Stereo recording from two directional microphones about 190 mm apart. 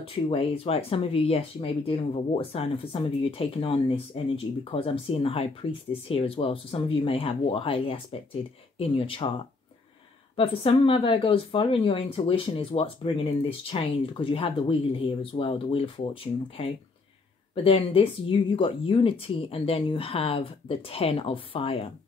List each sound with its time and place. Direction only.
0.0 s speech: 30° left (ahead or behind)
10.3 s speech: 30° left (ahead or behind)